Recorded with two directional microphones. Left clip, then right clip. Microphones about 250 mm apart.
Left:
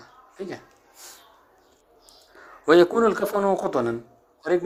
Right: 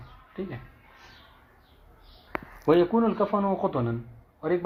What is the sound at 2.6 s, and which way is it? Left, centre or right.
A man's voice, left.